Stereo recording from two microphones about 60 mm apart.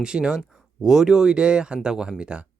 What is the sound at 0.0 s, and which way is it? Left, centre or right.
Speech, centre.